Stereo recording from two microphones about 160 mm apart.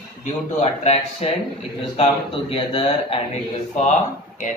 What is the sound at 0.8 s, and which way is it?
Speech, 40° left (ahead or behind).